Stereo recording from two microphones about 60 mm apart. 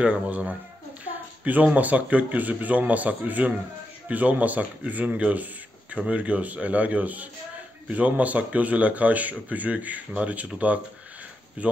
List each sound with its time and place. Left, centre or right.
0.0 s a man's voice: right